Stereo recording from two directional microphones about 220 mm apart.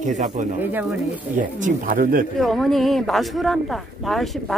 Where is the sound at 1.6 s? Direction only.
40° right (ahead or behind).